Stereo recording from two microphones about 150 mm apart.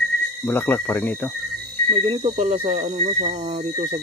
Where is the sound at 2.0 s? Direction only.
40° right (ahead or behind).